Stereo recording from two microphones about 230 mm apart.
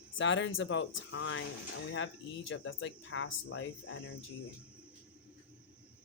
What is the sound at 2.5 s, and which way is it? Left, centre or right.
Speech, left.